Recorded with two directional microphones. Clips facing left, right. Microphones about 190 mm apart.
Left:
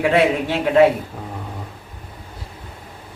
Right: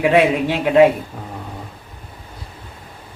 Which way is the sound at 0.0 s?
15° right (ahead or behind).